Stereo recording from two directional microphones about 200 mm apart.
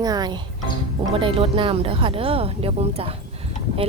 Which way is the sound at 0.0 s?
20° right (ahead or behind).